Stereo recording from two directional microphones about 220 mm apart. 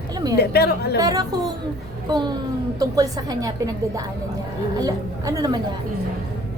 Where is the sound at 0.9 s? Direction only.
15° right (ahead or behind).